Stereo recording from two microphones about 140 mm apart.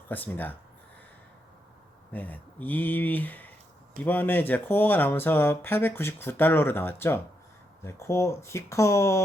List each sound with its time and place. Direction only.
0.1 s speech: 10° left (ahead or behind)
2.1 s speech: 10° left (ahead or behind)